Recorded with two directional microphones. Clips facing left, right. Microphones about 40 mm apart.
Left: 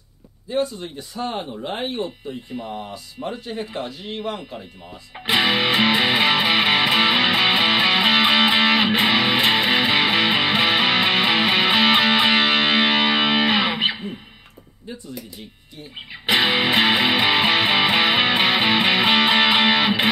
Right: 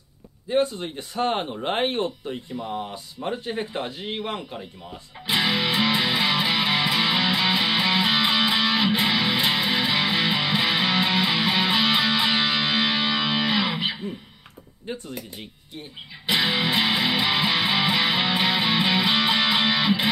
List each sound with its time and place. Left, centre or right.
0.7 s speech: right
3.3 s speech: right
3.7 s speech: right
5.1 s music: left
14.9 s speech: right
16.1 s music: left